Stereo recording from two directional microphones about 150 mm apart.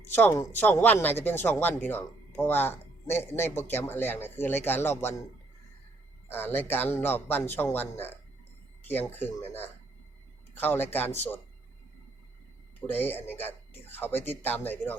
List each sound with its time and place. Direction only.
0.1 s speech: 15° left (ahead or behind)
6.2 s speech: 15° left (ahead or behind)
12.9 s speech: 15° left (ahead or behind)